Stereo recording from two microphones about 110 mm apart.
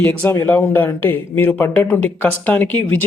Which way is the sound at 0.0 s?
15° left (ahead or behind).